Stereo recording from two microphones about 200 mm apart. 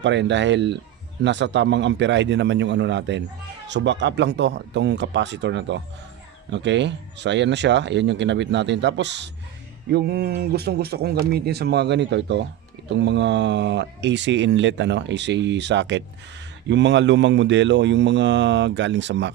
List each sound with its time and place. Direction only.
0.0 s speech: 65° right (ahead or behind)